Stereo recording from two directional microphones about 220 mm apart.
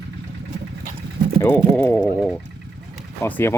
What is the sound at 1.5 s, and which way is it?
Speech, 10° left (ahead or behind).